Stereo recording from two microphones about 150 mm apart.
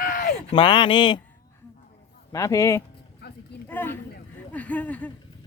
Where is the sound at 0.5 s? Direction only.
35° left (ahead or behind).